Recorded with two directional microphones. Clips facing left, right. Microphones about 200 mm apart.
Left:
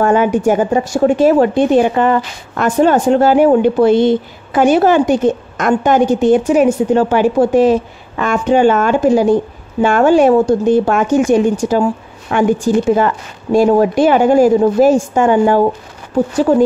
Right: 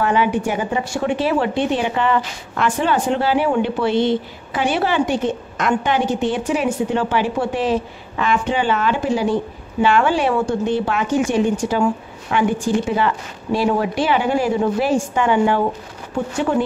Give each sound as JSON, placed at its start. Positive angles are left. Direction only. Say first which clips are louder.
{"t": 0.0, "sound": "a woman's voice", "louder": "left 6 dB", "side_deg": 45}